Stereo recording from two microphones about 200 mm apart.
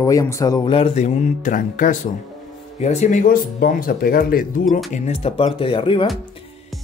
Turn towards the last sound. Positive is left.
turn(degrees=25)  # may be behind; listen again after turning